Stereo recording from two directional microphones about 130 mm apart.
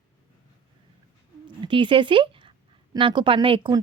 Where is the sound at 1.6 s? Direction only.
40° right (ahead or behind).